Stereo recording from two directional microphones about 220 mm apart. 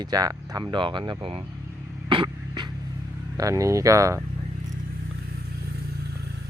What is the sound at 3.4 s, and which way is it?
Speech, 15° right (ahead or behind).